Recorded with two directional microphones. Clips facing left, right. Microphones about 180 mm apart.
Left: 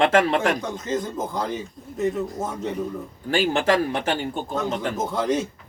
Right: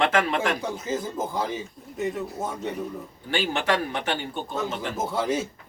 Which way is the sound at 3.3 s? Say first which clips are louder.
Left 5 dB; 45° left (ahead or behind).